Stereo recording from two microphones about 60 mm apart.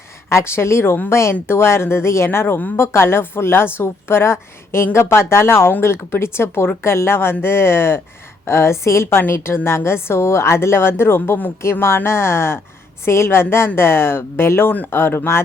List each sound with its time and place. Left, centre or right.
0.3 s a woman's voice: left